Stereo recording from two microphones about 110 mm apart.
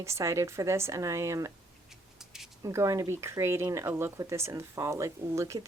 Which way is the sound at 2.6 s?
30° right (ahead or behind).